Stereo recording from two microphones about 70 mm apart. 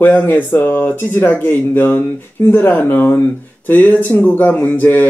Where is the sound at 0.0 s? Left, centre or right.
Left.